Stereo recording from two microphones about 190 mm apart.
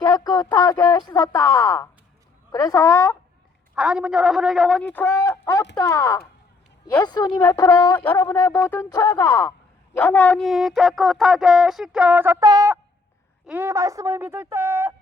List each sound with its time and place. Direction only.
0.0 s a sound: 20° left (ahead or behind)
0.4 s speech: 20° left (ahead or behind)
3.8 s speech: 5° right (ahead or behind); by 7.9 s 20° left (ahead or behind)
7.9 s a woman's voice: 10° left (ahead or behind); by 14.9 s 15° right (ahead or behind)